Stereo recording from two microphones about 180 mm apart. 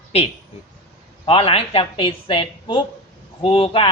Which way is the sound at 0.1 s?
35° left (ahead or behind).